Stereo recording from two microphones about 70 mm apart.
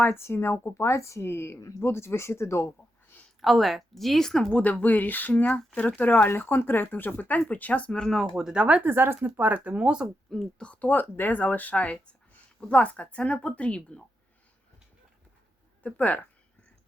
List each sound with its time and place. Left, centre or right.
0.0 s speech: left
3.4 s speech: centre
8.4 s speech: centre
8.6 s speech: centre
8.9 s speech: right; by 10.1 s centre
10.2 s a woman's voice: centre
10.6 s speech: centre
15.8 s speech: left